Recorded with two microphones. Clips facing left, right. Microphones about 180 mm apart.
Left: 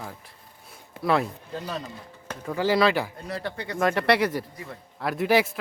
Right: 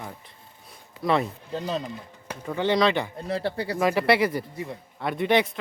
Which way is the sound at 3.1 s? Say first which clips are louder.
Right 5 dB; 30° right (ahead or behind).